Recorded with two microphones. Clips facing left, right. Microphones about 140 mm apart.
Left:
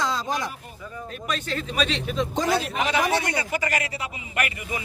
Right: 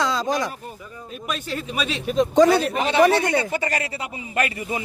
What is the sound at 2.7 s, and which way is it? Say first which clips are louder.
Speech: right 6 dB; 30° right (ahead or behind).